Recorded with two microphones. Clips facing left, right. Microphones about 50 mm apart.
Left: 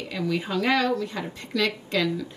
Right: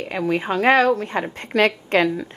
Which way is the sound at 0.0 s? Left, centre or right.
Right.